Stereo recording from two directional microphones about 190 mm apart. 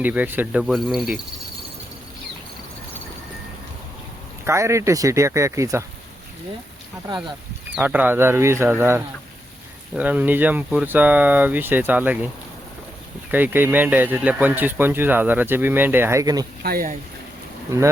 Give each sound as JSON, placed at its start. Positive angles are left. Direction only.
{"t": 0.0, "sound": "speech", "side_deg": -10}
{"t": 4.4, "sound": "speech", "side_deg": -15}
{"t": 7.8, "sound": "speech", "side_deg": -10}
{"t": 13.3, "sound": "speech", "side_deg": -10}
{"t": 16.6, "sound": "speech", "side_deg": -50}
{"t": 17.7, "sound": "speech", "side_deg": -15}